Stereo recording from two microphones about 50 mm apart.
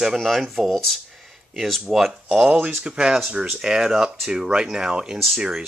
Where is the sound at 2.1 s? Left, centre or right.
Centre.